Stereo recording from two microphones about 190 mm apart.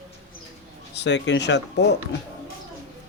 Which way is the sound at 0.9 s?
65° left (ahead or behind).